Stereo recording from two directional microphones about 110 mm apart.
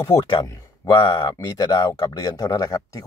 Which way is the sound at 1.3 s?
35° left (ahead or behind).